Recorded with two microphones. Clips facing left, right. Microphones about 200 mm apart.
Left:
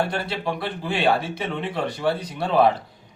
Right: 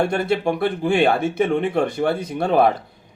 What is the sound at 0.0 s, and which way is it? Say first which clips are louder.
A man's voice: right 6 dB; 50° right (ahead or behind).